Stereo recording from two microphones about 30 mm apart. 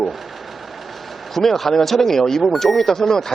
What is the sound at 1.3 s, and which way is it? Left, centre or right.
A man's voice, centre.